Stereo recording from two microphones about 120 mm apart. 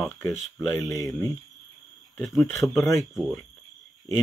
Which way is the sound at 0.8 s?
30° left (ahead or behind).